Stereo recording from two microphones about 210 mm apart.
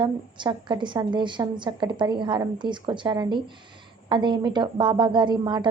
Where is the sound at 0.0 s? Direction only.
20° right (ahead or behind).